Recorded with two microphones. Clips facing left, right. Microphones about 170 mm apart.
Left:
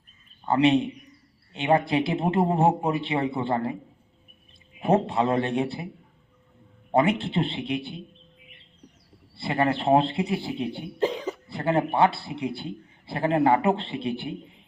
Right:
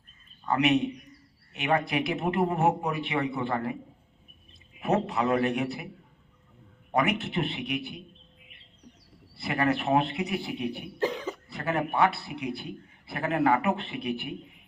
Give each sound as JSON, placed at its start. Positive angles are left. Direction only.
{"t": 0.4, "sound": "a man's voice", "side_deg": 30}
{"t": 4.8, "sound": "a man's voice", "side_deg": 30}
{"t": 6.9, "sound": "a man's voice", "side_deg": 30}
{"t": 9.3, "sound": "a man's voice", "side_deg": 30}
{"t": 11.0, "sound": "cough", "side_deg": 20}
{"t": 11.4, "sound": "a man's voice", "side_deg": 30}